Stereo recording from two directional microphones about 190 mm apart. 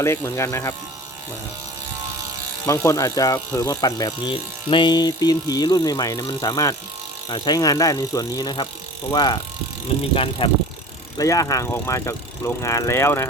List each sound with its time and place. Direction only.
0.0 s speech: 15° left (ahead or behind)
2.6 s speech: 15° left (ahead or behind)